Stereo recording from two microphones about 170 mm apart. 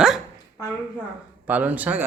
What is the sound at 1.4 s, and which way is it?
Speech, 10° right (ahead or behind).